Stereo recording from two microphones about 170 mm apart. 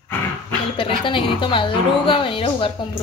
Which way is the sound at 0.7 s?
30° left (ahead or behind).